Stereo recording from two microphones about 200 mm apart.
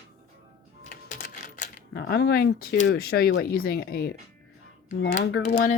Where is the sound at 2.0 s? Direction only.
55° left (ahead or behind).